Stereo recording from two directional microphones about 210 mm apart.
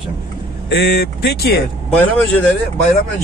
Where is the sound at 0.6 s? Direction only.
50° left (ahead or behind).